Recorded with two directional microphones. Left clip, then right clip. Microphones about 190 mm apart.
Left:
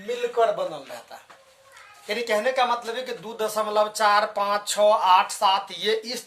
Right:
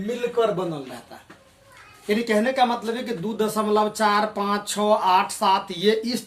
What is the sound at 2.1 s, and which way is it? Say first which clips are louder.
Speech: right 2 dB; 20° left (ahead or behind).